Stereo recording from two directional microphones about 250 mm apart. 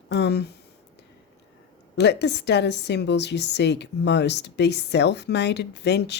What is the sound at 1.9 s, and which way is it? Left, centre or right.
A woman's voice, left.